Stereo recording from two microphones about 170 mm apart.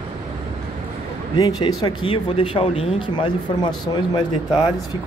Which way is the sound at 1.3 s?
25° left (ahead or behind).